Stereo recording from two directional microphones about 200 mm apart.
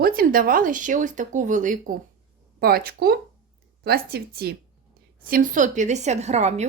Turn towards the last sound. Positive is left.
turn(degrees=-35)  # may be behind; listen again after turning